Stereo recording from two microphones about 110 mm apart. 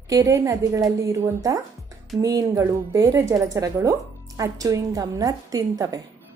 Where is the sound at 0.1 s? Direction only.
30° right (ahead or behind).